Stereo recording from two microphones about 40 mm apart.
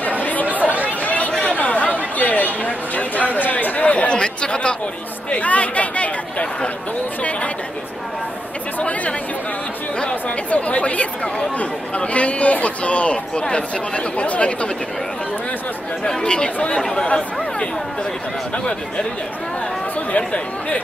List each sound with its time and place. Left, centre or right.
0.2 s chatter: left
1.3 s chatter: left
1.6 s chatter: left
2.1 s a sound: left
5.3 s speech: left
8.7 s speech: left
10.2 s speech: left
16.0 s speech: centre
20.1 s speech: left